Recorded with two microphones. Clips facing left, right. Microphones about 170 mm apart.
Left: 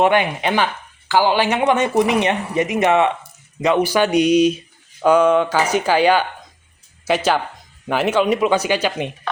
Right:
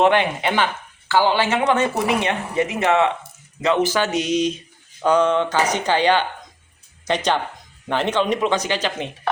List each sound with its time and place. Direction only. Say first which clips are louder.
0.0 s speech: left 1 dB; 10° left (ahead or behind)